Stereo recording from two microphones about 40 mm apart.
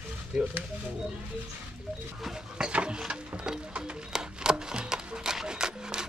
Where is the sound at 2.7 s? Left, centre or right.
Right.